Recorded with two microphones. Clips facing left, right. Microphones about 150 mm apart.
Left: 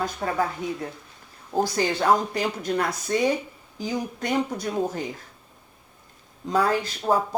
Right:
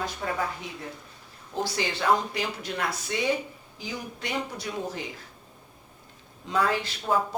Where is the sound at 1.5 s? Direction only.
45° left (ahead or behind).